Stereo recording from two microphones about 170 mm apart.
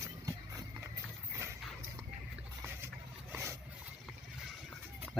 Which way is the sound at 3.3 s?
15° right (ahead or behind).